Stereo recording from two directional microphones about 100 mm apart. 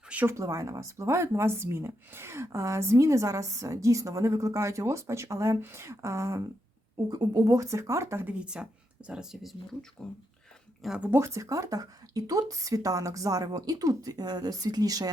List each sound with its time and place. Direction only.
0.3 s speech: 30° right (ahead or behind)
7.1 s speech: 40° right (ahead or behind)
8.3 s speech: 10° right (ahead or behind)
10.0 s speech: 10° left (ahead or behind)
10.8 s speech: 10° right (ahead or behind)
11.1 s speech: 30° right (ahead or behind)